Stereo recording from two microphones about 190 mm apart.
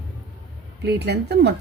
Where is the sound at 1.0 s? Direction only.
60° right (ahead or behind).